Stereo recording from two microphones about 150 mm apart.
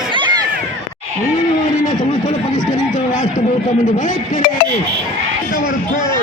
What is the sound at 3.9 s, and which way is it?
Speech, 60° left (ahead or behind).